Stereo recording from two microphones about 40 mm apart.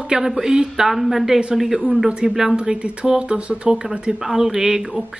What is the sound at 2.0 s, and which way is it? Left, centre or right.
Speech, right.